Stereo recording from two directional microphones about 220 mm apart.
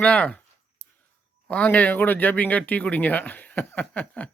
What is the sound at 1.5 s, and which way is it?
Speech, 5° left (ahead or behind).